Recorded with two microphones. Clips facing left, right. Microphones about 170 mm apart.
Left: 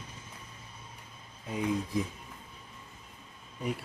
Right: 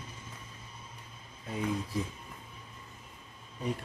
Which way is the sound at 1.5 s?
15° left (ahead or behind).